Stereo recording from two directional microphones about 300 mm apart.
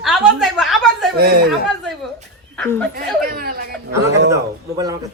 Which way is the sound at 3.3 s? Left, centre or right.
Right.